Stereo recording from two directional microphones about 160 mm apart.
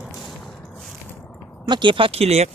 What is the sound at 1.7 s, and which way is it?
Speech, 30° right (ahead or behind).